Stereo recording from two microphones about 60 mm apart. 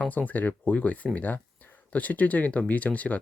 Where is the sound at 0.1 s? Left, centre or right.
Left.